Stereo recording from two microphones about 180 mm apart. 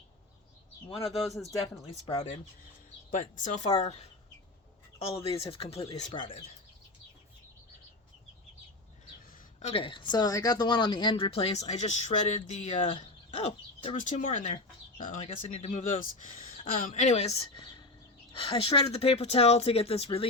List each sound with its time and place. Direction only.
3.1 s speech: 45° left (ahead or behind)
9.6 s speech: 35° left (ahead or behind)
15.7 s speech: 45° left (ahead or behind)